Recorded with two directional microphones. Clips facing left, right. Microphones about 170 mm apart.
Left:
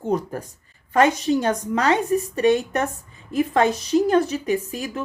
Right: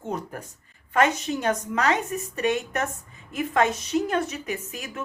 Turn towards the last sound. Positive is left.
turn(degrees=30)  # may be behind; listen again after turning